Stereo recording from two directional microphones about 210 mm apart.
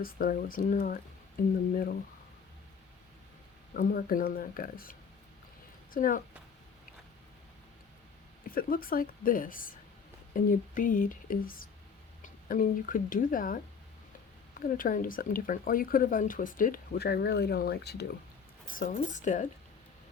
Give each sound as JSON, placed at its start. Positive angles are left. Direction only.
{"t": 0.0, "sound": "speech", "side_deg": 40}
{"t": 3.8, "sound": "speech", "side_deg": 40}
{"t": 8.4, "sound": "speech", "side_deg": 40}
{"t": 14.6, "sound": "speech", "side_deg": 40}
{"t": 18.7, "sound": "speech", "side_deg": 40}